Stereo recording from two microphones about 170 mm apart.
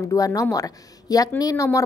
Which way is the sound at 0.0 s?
20° left (ahead or behind).